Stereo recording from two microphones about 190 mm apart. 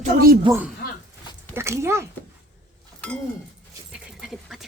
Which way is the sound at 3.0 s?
5° left (ahead or behind).